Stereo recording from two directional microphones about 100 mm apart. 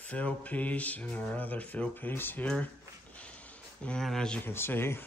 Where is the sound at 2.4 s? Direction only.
10° left (ahead or behind).